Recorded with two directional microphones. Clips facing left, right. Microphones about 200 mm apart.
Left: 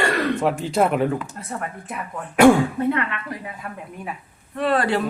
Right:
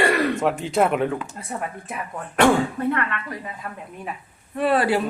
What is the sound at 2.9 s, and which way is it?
Speech, 15° left (ahead or behind).